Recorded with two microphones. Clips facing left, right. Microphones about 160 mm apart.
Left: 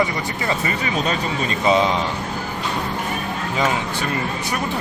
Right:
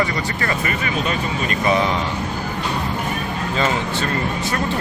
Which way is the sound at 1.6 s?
20° left (ahead or behind).